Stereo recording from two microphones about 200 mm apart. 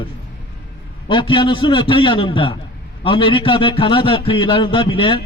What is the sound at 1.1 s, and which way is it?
A man's voice, 25° left (ahead or behind).